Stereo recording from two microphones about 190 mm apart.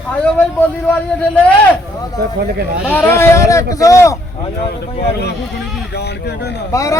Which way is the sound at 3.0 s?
15° left (ahead or behind).